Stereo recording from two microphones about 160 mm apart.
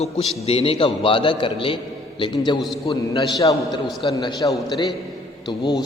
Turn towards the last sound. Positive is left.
turn(degrees=25)  # may be behind; listen again after turning